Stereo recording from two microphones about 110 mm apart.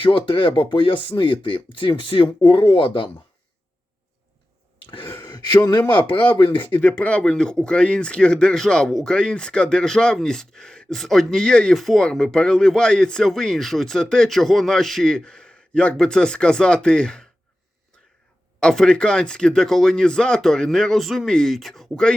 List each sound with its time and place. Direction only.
0.0 s speech: 50° left (ahead or behind)
4.9 s a sound: 45° left (ahead or behind)
6.3 s speech: 50° left (ahead or behind)
6.9 s speech: 10° left (ahead or behind)
18.6 s speech: 5° left (ahead or behind)